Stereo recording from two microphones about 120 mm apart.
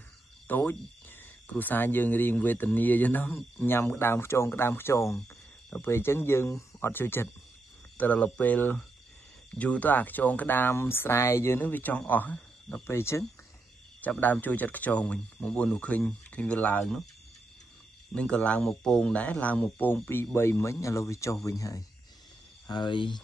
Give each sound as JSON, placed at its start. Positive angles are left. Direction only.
{"t": 0.5, "sound": "speech", "side_deg": 15}
{"t": 18.1, "sound": "speech", "side_deg": 10}
{"t": 22.7, "sound": "speech", "side_deg": 40}